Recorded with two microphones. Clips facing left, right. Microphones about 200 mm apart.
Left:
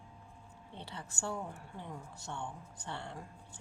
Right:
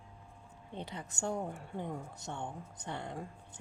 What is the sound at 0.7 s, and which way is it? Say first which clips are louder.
Speech: right 4 dB; 20° right (ahead or behind).